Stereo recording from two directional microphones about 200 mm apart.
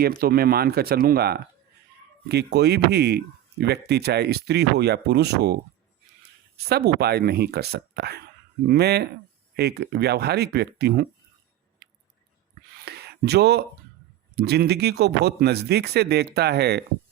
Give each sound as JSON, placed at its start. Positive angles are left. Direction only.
{"t": 0.0, "sound": "speech", "side_deg": -50}
{"t": 6.7, "sound": "speech", "side_deg": -55}
{"t": 12.8, "sound": "a sound", "side_deg": -55}
{"t": 14.3, "sound": "speech", "side_deg": -50}